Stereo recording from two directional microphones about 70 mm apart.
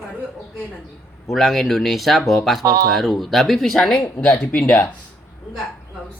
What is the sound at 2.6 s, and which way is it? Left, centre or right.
Speech, right.